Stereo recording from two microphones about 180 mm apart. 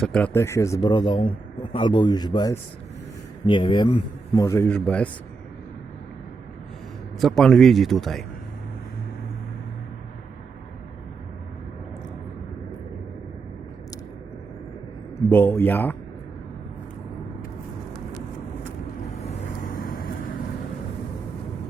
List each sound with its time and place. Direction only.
0.0 s a man's voice: 5° left (ahead or behind)
7.2 s a man's voice: centre (ahead or behind)
15.3 s speech: 10° left (ahead or behind)
19.6 s vehicle: 50° left (ahead or behind)